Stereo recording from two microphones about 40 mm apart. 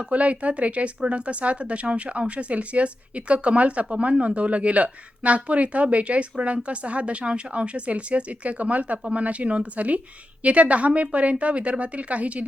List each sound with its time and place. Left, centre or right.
0.1 s speech: right